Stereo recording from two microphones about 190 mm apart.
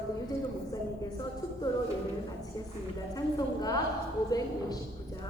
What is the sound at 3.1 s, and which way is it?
A woman's voice, 20° left (ahead or behind).